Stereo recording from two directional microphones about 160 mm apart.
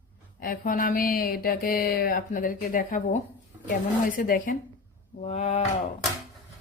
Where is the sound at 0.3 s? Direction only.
60° left (ahead or behind).